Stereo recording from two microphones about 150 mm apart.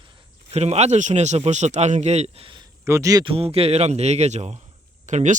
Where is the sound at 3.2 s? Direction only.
40° right (ahead or behind).